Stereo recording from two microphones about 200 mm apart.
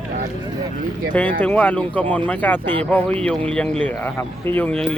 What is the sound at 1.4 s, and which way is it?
Speech, 10° left (ahead or behind).